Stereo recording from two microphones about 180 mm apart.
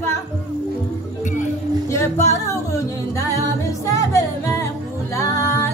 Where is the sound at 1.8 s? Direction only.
15° left (ahead or behind).